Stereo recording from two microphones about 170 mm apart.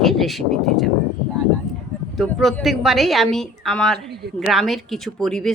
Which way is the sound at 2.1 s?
Centre (ahead or behind).